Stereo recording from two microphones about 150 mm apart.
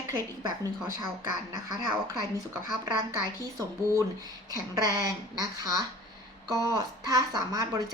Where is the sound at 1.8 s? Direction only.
25° right (ahead or behind).